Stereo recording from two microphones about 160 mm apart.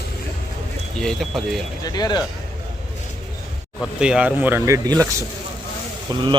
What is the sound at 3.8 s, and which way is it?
A man's voice, 5° right (ahead or behind).